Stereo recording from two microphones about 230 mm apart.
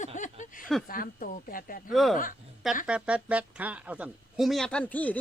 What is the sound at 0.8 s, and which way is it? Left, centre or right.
Speech, left.